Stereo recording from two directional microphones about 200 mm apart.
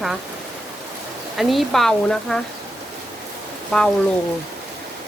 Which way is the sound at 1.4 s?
Centre (ahead or behind).